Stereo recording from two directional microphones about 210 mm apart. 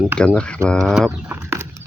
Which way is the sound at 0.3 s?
5° left (ahead or behind).